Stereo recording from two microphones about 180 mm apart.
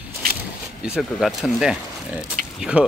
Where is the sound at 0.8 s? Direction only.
Centre (ahead or behind).